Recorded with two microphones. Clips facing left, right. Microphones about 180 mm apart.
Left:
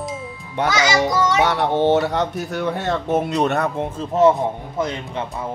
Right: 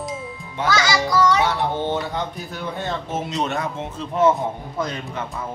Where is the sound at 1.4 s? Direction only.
70° left (ahead or behind).